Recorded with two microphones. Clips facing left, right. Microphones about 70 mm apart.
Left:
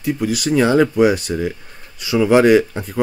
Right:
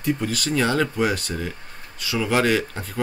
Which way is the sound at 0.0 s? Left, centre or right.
Centre.